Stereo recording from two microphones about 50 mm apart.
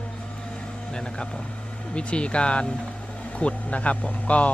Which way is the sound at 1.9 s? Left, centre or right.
Left.